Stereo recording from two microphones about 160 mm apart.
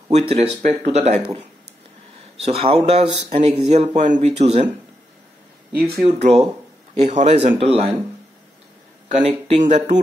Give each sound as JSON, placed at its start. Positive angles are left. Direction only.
{"t": 0.1, "sound": "speech", "side_deg": -35}
{"t": 2.3, "sound": "speech", "side_deg": -40}
{"t": 6.0, "sound": "speech", "side_deg": -40}
{"t": 9.1, "sound": "speech", "side_deg": -45}